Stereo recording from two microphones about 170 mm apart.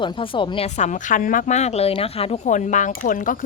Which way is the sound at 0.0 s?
30° left (ahead or behind).